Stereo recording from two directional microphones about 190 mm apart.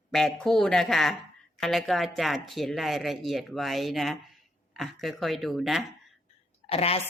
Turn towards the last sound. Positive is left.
turn(degrees=30)  # may be behind; listen again after turning